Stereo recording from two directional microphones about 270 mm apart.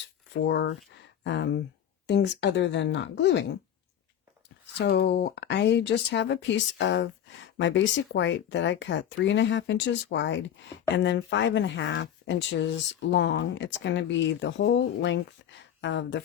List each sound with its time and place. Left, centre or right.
0.4 s speech: left
4.8 s speech: left